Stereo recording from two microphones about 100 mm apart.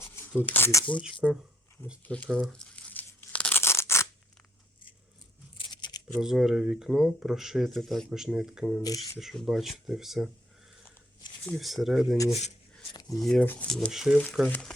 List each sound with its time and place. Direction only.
0.4 s speech: 20° left (ahead or behind)
2.0 s speech: 10° left (ahead or behind)
2.4 s tearing: 5° left (ahead or behind)
3.6 s scissors: 25° left (ahead or behind)
5.5 s tearing: 50° left (ahead or behind)
6.1 s speech: 5° right (ahead or behind)
8.8 s speech: 35° left (ahead or behind)
9.1 s speech: centre (ahead or behind)
11.4 s speech: centre (ahead or behind)
13.4 s speech: 15° left (ahead or behind)
13.7 s speech: 5° left (ahead or behind)